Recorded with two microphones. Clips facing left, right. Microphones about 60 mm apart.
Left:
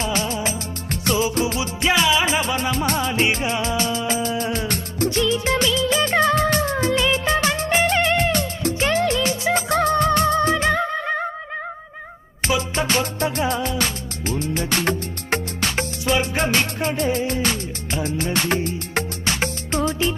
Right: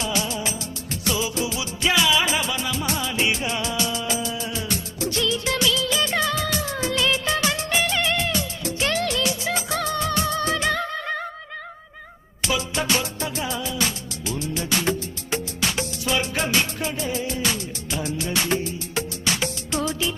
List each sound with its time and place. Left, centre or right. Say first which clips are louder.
0.0 s music of bollywood: left 3 dB; left
1.0 s music: left 5 dB; left
2.6 s music: left 5 dB; left
3.3 s music: left 3 dB; left
5.1 s music: left 3 dB; left
6.1 s music: left 6 dB; left
7.0 s music of bollywood: left 3 dB; left
8.8 s music: left 3 dB; left
10.7 s music: left 4 dB; centre
12.4 s music: left 3 dB; left
18.4 s music: left 3 dB; left